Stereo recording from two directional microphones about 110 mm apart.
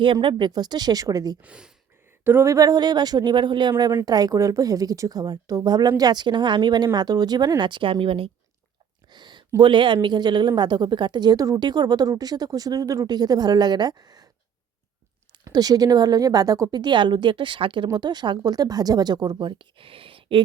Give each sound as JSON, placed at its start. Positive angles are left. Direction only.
{"t": 0.0, "sound": "a woman's voice", "side_deg": -50}
{"t": 1.4, "sound": "speech", "side_deg": -10}
{"t": 2.2, "sound": "a woman's voice", "side_deg": -25}
{"t": 9.0, "sound": "a sound", "side_deg": -40}
{"t": 9.6, "sound": "a woman's voice", "side_deg": -45}
{"t": 15.4, "sound": "a woman's voice", "side_deg": -35}